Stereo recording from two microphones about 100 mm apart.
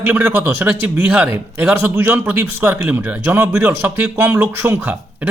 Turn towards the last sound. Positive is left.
turn(degrees=-15)  # may be behind; listen again after turning